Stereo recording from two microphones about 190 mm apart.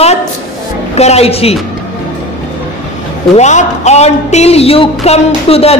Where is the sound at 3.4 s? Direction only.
35° left (ahead or behind).